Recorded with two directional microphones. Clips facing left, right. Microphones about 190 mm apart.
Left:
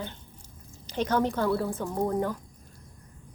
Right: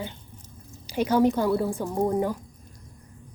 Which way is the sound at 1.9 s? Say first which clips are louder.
Right 3 dB; 25° right (ahead or behind).